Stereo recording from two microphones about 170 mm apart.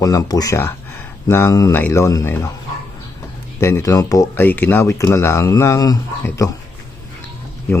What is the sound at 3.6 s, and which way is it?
Speech, 15° left (ahead or behind).